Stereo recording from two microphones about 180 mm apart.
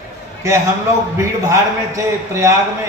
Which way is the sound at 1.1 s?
15° right (ahead or behind).